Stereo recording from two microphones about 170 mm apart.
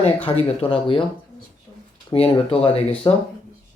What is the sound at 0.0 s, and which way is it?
Speech, 35° left (ahead or behind).